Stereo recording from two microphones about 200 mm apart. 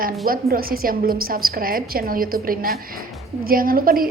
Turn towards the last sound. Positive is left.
turn(degrees=-45)  # may be behind; listen again after turning